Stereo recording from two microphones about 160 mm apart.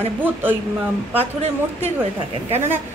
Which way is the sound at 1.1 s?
40° right (ahead or behind).